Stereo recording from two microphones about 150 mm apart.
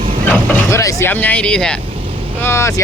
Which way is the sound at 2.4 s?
20° left (ahead or behind).